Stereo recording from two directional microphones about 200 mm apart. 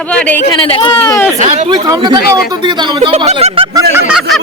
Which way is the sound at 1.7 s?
20° right (ahead or behind).